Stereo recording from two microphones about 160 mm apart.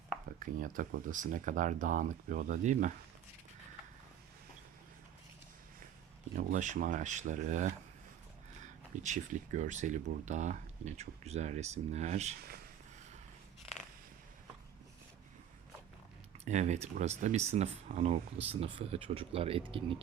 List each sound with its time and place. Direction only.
0.3 s speech: 55° right (ahead or behind)
6.3 s speech: 50° right (ahead or behind)
9.0 s speech: 50° right (ahead or behind)
12.4 s speech: 70° right (ahead or behind)
16.5 s speech: 45° right (ahead or behind)